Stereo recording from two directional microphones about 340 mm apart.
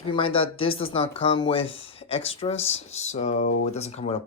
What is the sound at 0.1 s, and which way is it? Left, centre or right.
Speech, centre.